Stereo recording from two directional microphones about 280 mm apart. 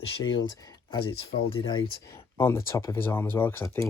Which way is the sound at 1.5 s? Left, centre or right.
Centre.